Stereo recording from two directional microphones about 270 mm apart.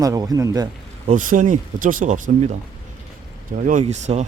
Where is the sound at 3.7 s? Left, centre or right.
Right.